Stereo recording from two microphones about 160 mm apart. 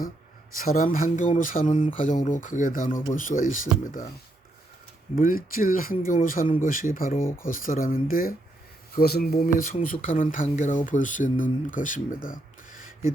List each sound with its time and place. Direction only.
0.5 s speech: 60° left (ahead or behind)
5.1 s speech: 60° left (ahead or behind)
9.0 s speech: 75° left (ahead or behind)